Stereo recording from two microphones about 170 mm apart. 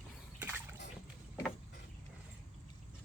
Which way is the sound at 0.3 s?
10° right (ahead or behind).